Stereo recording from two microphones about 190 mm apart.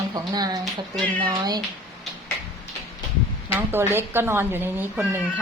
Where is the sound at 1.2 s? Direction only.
25° right (ahead or behind).